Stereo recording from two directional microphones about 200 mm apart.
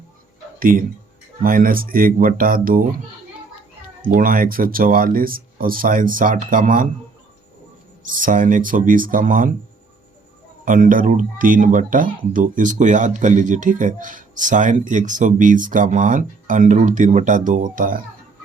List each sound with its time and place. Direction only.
0.6 s speech: 45° right (ahead or behind)
4.0 s speech: 45° right (ahead or behind)
8.0 s speech: 40° right (ahead or behind)
10.7 s speech: 40° right (ahead or behind)